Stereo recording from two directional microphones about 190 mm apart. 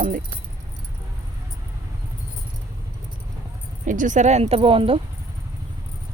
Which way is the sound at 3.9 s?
40° right (ahead or behind).